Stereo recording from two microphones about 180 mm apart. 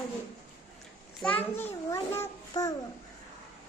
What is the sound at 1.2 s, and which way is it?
A child's voice, 5° left (ahead or behind).